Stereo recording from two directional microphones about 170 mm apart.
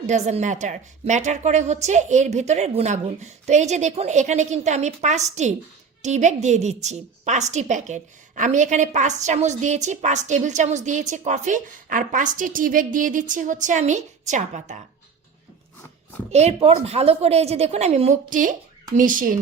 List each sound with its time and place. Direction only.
0.1 s a woman's voice: 40° right (ahead or behind)
16.3 s a woman's voice: 40° right (ahead or behind)